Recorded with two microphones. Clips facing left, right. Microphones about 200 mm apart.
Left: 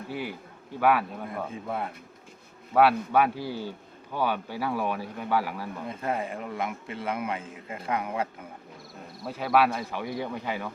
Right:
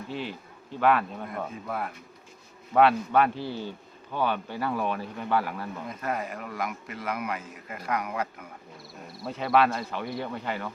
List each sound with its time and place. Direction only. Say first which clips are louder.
0.1 s a man's voice: left 1 dB; 10° left (ahead or behind)
1.6 s a man's voice: left 1 dB; 25° left (ahead or behind)
2.7 s speech: even; 10° left (ahead or behind)
5.9 s a man's voice: left 2 dB; 30° left (ahead or behind)
9.2 s speech: even; 5° left (ahead or behind)